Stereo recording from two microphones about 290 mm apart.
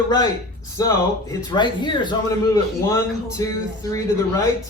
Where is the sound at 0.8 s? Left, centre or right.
Centre.